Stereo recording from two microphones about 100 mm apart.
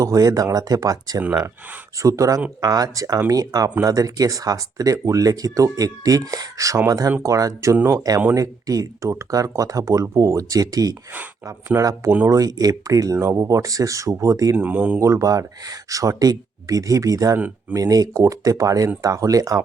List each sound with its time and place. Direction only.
0.0 s speech: 35° right (ahead or behind)
14.5 s speech: 15° right (ahead or behind)
14.9 s speech: 30° right (ahead or behind)
17.3 s speech: 15° right (ahead or behind)
17.7 s speech: 35° right (ahead or behind)